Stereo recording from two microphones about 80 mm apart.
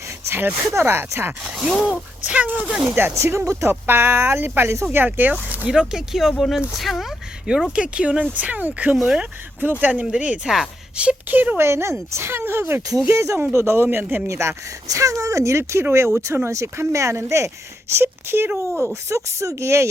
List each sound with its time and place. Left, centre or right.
0.3 s speech: right
1.5 s speech: centre
2.2 s speech: centre
2.6 s speech: centre
2.9 s speech: right
3.8 s speech: right
5.9 s speech: centre
7.8 s speech: centre
14.3 s speech: right